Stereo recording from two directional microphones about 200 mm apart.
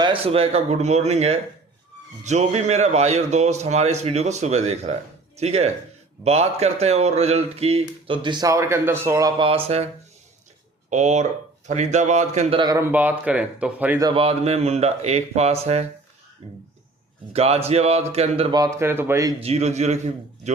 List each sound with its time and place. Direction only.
0.0 s a man's voice: 25° right (ahead or behind); by 14.1 s 10° right (ahead or behind)
14.1 s a man's voice: 30° right (ahead or behind)
17.3 s a man's voice: 30° right (ahead or behind)
18.8 s speech: 10° right (ahead or behind)
19.4 s a man's voice: 30° right (ahead or behind)